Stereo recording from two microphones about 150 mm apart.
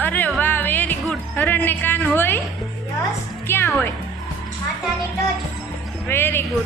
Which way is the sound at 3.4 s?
15° left (ahead or behind).